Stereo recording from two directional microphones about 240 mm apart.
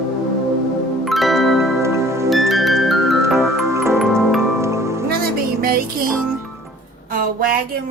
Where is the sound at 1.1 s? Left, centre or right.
Centre.